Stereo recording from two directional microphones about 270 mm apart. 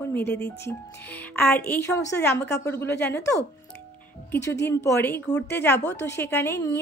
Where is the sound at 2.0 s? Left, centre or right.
Left.